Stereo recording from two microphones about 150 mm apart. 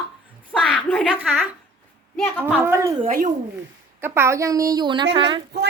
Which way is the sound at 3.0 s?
60° right (ahead or behind).